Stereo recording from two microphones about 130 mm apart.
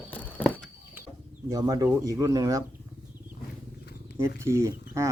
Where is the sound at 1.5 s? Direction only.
25° right (ahead or behind).